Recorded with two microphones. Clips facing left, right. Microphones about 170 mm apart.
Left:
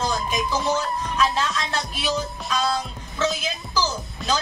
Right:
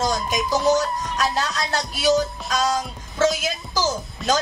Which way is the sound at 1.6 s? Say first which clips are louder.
Right 3 dB; 40° right (ahead or behind).